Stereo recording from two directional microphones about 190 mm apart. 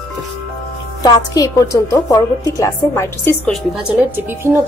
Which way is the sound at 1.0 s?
20° left (ahead or behind).